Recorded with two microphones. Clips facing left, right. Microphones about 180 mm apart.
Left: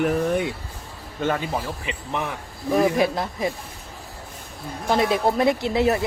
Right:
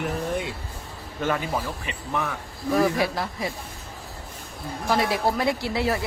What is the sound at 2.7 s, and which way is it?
Speech, 20° left (ahead or behind).